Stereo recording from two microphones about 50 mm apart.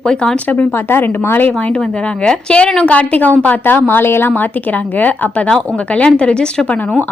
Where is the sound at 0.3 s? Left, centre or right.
Left.